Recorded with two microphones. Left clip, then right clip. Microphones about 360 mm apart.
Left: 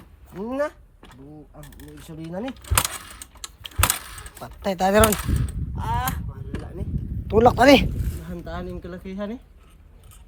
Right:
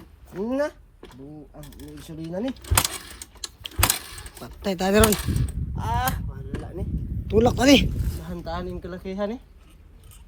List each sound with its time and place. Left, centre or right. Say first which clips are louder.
0.3 s a sound: right 1 dB; centre
1.5 s speech: right 2 dB; centre
2.6 s keys jangling: left 2 dB; centre
7.3 s speech: left 4 dB; centre
7.9 s speech: even; centre